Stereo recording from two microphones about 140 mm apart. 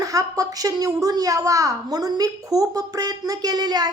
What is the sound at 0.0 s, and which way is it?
A woman's voice, 25° right (ahead or behind).